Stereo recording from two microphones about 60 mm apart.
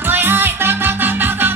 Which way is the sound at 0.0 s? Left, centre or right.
Right.